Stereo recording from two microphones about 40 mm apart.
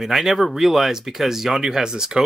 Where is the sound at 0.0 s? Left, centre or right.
Centre.